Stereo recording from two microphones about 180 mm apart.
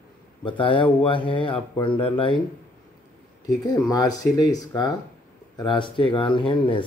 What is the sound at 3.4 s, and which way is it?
Speech, 20° left (ahead or behind).